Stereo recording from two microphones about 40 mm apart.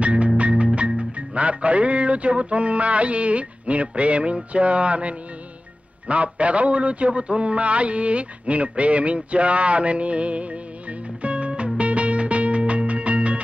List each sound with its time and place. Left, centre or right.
0.0 s music: right
4.5 s a man's voice: right